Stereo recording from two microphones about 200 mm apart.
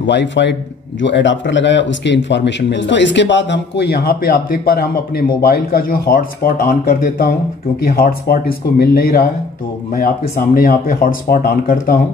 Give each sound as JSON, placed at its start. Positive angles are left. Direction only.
{"t": 0.0, "sound": "a man's voice", "side_deg": 60}